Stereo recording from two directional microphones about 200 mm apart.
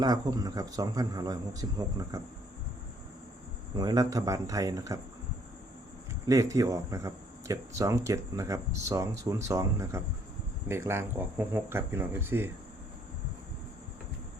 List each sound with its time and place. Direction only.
0.0 s a man's voice: 20° right (ahead or behind)
3.8 s speech: 20° right (ahead or behind)
6.2 s speech: 15° right (ahead or behind)